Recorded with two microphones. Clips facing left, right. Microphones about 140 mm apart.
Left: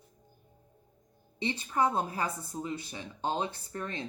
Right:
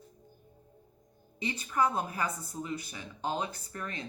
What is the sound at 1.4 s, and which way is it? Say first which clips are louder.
Speech: left 1 dB; 30° left (ahead or behind).